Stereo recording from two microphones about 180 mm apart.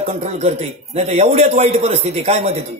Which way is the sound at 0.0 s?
35° right (ahead or behind).